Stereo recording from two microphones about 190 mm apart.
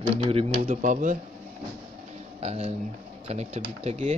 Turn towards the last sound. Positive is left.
turn(degrees=-35)  # may be behind; listen again after turning